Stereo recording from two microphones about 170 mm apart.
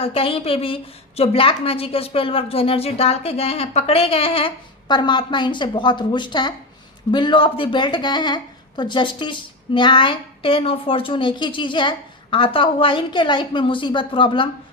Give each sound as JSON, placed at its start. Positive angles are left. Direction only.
{"t": 0.0, "sound": "a woman's voice", "side_deg": 35}